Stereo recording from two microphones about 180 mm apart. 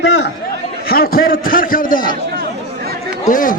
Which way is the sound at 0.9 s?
55° left (ahead or behind).